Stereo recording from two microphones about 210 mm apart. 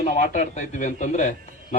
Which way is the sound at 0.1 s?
35° left (ahead or behind).